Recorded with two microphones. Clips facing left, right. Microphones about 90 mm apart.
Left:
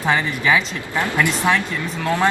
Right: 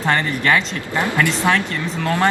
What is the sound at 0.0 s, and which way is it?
Speech, 5° left (ahead or behind).